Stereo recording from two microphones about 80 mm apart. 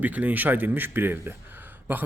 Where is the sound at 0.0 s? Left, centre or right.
Right.